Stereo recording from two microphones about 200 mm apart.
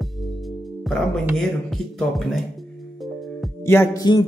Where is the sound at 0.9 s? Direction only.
Centre (ahead or behind).